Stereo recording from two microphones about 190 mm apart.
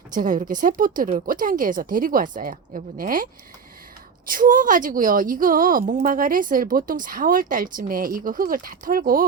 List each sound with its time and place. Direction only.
0.1 s a woman's voice: 45° right (ahead or behind)
4.3 s a woman's voice: 45° right (ahead or behind)